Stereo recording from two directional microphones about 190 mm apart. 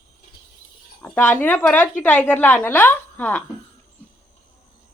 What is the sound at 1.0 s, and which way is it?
A woman's voice, 10° left (ahead or behind).